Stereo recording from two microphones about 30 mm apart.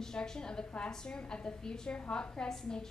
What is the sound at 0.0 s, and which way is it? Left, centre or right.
A woman's voice, left.